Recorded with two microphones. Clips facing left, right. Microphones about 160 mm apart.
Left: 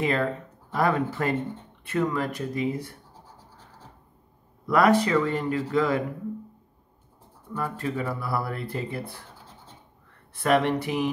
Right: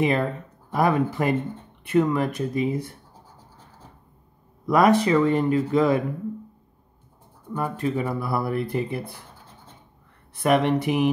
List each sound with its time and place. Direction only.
0.0 s speech: 20° right (ahead or behind)
4.6 s speech: 20° right (ahead or behind)
7.5 s speech: 20° right (ahead or behind)
10.4 s speech: 15° right (ahead or behind)